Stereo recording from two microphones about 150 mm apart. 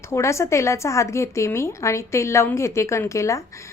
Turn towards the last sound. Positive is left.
turn(degrees=20)  # may be behind; listen again after turning